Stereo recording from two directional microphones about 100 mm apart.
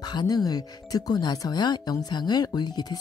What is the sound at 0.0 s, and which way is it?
Speech, 45° left (ahead or behind).